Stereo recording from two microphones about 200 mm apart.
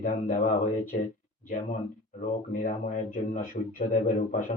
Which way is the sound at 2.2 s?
40° left (ahead or behind).